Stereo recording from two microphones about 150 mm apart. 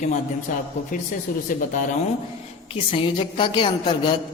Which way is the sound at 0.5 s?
60° left (ahead or behind).